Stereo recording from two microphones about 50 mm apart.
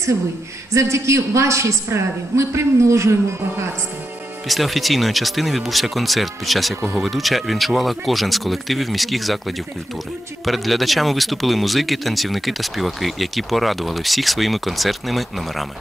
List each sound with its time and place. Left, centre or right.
0.7 s a woman's voice: right
4.5 s speech: centre